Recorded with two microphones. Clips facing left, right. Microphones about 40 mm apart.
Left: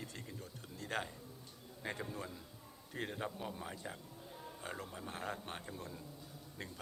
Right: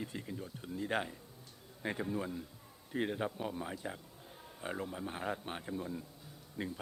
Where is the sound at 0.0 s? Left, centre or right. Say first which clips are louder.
Right 6 dB; centre.